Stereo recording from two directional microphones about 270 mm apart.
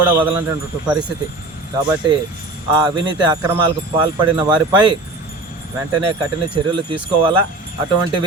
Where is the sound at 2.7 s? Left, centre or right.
Centre.